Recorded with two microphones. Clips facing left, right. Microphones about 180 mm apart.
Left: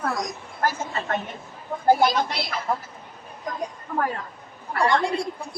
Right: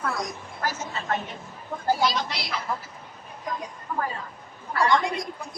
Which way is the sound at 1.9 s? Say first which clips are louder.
Left 5 dB; 55° left (ahead or behind).